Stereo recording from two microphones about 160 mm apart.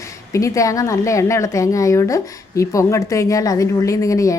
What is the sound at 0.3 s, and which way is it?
Speech, 20° left (ahead or behind).